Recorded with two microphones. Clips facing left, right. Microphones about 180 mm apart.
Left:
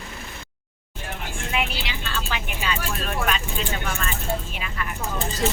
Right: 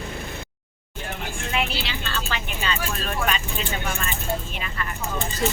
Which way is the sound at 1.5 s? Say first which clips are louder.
Right 1 dB; 15° left (ahead or behind).